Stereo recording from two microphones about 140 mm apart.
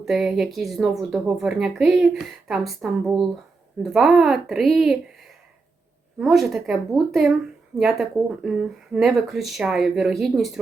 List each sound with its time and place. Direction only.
0.0 s speech: 5° right (ahead or behind)